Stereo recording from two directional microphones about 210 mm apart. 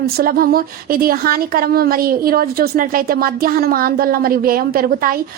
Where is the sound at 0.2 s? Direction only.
45° right (ahead or behind).